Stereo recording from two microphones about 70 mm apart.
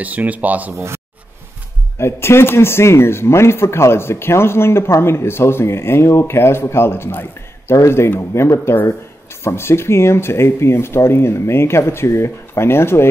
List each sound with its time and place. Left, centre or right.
0.0 s speech: right
0.7 s speech: right
2.0 s speech: left